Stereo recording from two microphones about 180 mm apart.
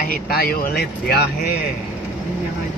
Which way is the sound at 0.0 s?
55° left (ahead or behind).